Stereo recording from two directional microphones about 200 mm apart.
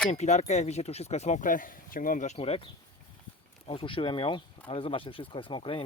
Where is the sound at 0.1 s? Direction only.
35° left (ahead or behind).